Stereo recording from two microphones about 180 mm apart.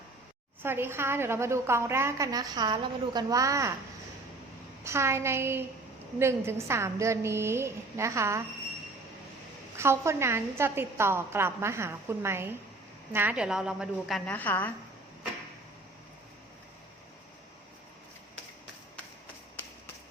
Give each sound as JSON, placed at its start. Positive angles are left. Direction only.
{"t": 0.6, "sound": "a woman's voice", "side_deg": -15}
{"t": 4.8, "sound": "a woman's voice", "side_deg": -15}
{"t": 9.7, "sound": "a woman's voice", "side_deg": -15}
{"t": 14.3, "sound": "a woman's voice", "side_deg": 10}